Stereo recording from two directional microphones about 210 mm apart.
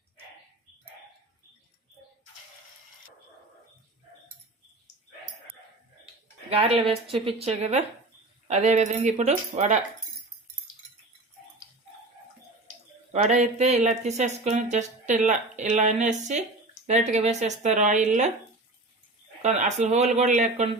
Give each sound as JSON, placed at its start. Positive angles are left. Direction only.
{"t": 6.5, "sound": "a woman's voice", "side_deg": -30}
{"t": 13.1, "sound": "speech", "side_deg": -35}
{"t": 19.4, "sound": "speech", "side_deg": -35}